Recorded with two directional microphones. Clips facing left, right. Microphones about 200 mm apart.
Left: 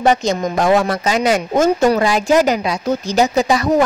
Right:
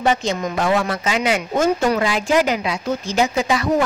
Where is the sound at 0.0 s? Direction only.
40° left (ahead or behind).